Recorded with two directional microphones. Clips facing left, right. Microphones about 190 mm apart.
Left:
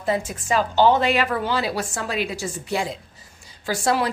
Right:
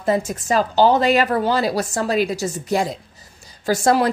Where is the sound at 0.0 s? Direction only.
45° right (ahead or behind).